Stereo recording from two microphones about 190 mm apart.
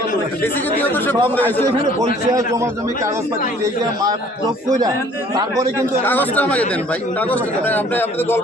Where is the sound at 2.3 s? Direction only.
15° right (ahead or behind).